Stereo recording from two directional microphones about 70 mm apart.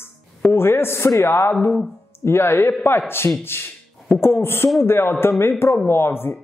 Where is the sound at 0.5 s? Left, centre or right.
Left.